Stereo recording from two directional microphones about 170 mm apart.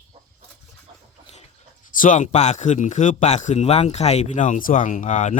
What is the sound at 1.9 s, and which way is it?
Speech, 50° left (ahead or behind).